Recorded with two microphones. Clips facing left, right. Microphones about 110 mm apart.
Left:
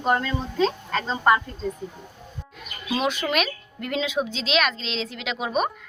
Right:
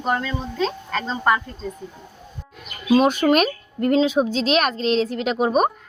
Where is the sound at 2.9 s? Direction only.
45° right (ahead or behind).